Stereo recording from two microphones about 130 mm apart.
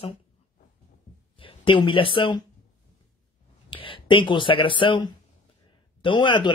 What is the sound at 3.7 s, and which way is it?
Speech, 40° left (ahead or behind).